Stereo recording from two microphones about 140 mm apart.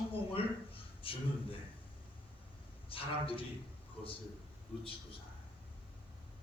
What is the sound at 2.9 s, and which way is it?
Speech, 40° left (ahead or behind).